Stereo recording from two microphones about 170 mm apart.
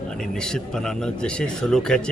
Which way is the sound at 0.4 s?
5° left (ahead or behind).